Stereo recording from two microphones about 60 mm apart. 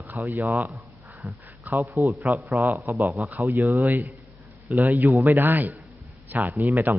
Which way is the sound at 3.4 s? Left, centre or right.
Right.